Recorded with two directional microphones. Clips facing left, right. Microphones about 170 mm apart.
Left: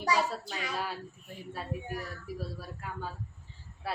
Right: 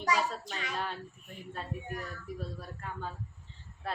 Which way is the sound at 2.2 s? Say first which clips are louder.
Left 1 dB; 5° left (ahead or behind).